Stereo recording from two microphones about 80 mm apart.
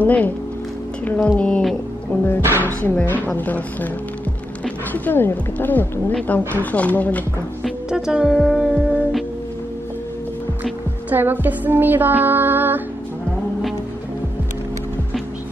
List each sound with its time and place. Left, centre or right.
0.0 s speech: centre
2.9 s speech: left
7.9 s speech: centre
10.6 s music: right